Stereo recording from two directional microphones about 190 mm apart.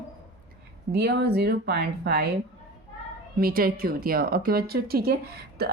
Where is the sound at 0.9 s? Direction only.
60° right (ahead or behind).